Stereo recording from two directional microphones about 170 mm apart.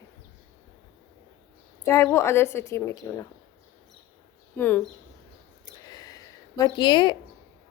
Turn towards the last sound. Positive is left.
turn(degrees=30)  # may be behind; listen again after turning